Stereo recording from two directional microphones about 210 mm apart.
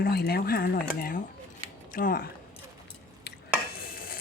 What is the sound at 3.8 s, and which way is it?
Stir, 45° left (ahead or behind).